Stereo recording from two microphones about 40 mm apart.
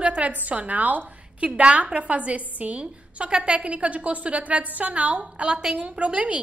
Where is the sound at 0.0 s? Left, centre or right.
Right.